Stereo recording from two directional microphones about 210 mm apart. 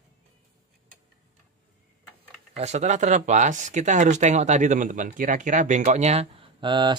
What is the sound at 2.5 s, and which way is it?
Speech, 30° right (ahead or behind).